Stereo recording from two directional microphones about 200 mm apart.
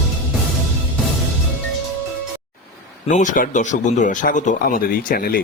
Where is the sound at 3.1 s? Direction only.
40° left (ahead or behind).